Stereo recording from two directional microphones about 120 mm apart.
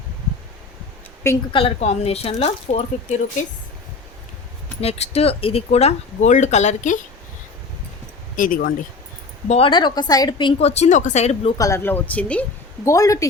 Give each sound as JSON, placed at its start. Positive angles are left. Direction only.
{"t": 1.5, "sound": "speech", "side_deg": 60}
{"t": 4.8, "sound": "speech", "side_deg": 60}
{"t": 8.4, "sound": "speech", "side_deg": 90}
{"t": 9.5, "sound": "speech", "side_deg": 50}
{"t": 10.6, "sound": "speech", "side_deg": 65}
{"t": 11.5, "sound": "speech", "side_deg": 25}
{"t": 12.8, "sound": "speech", "side_deg": 25}